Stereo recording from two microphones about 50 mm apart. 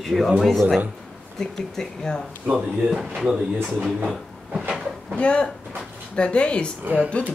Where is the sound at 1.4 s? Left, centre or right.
Centre.